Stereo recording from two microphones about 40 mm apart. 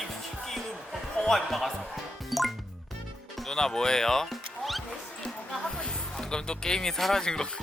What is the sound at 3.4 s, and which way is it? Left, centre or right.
Speech, centre.